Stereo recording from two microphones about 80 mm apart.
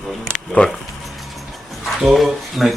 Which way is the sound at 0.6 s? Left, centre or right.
Centre.